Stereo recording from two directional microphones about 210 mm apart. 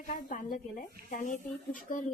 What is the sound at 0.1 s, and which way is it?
Speech, 40° left (ahead or behind).